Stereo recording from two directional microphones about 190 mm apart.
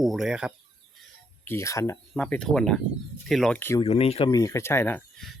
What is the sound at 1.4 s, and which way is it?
Speech, 15° left (ahead or behind).